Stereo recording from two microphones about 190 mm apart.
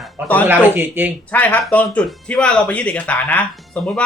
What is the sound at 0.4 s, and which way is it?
Speech, 10° right (ahead or behind).